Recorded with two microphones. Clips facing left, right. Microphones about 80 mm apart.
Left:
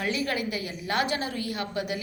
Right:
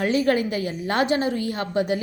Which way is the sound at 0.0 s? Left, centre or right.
Right.